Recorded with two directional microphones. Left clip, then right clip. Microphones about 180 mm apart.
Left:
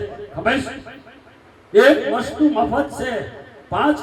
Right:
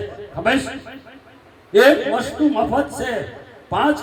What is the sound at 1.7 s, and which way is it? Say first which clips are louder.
A man's voice: even; 40° right (ahead or behind).